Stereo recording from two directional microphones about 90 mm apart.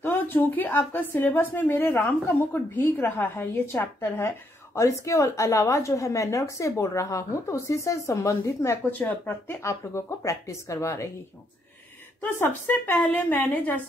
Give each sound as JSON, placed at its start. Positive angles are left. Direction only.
{"t": 0.0, "sound": "a woman's voice", "side_deg": 25}
{"t": 4.7, "sound": "a woman's voice", "side_deg": 35}
{"t": 12.2, "sound": "a woman's voice", "side_deg": 20}